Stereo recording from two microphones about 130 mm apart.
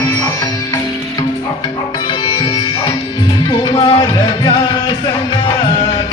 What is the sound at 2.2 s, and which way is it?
Music, 40° left (ahead or behind).